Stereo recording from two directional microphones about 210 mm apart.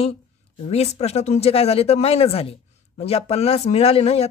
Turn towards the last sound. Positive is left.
turn(degrees=30)  # may be behind; listen again after turning